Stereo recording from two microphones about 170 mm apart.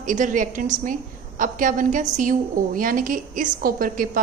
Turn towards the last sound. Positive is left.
turn(degrees=-55)  # may be behind; listen again after turning